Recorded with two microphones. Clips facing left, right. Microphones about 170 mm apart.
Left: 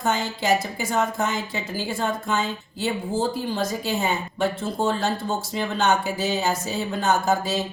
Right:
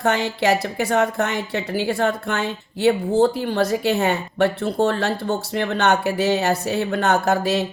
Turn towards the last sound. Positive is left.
turn(degrees=-65)  # may be behind; listen again after turning